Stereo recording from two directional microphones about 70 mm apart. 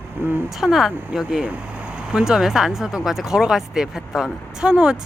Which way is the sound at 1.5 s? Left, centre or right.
Centre.